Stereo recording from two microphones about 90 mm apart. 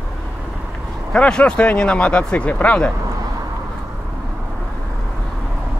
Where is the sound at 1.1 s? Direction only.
10° left (ahead or behind).